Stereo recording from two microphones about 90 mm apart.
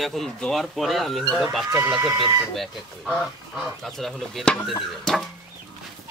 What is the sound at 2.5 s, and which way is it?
Speech, centre (ahead or behind).